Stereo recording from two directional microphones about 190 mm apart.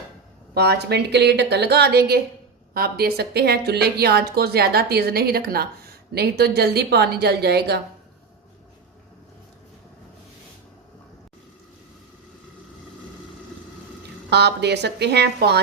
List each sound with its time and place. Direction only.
0.5 s speech: 60° right (ahead or behind)
14.3 s speech: 60° right (ahead or behind)